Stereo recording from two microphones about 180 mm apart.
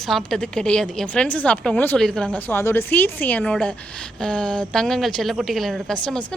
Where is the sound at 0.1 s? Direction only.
5° left (ahead or behind).